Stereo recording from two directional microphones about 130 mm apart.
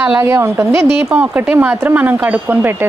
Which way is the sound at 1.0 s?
10° right (ahead or behind).